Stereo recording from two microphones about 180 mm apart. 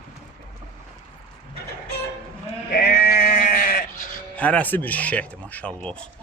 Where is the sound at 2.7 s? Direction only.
60° left (ahead or behind).